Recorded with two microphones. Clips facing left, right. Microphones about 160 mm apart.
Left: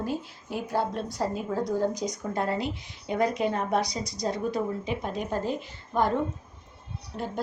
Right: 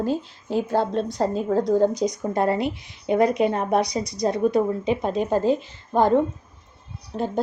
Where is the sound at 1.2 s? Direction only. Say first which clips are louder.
Right 5 dB; 65° right (ahead or behind).